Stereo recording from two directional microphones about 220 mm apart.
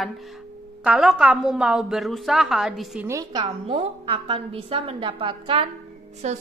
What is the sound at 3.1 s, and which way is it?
A woman's voice, 15° right (ahead or behind).